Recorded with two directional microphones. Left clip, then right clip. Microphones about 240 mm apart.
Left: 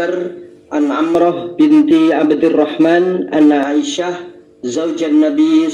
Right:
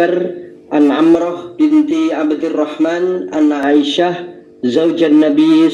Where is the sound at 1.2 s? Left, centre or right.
Left.